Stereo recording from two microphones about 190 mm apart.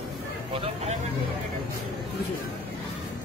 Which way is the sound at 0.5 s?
30° right (ahead or behind).